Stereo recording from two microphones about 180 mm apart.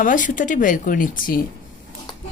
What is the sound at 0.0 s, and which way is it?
Speech, 45° left (ahead or behind).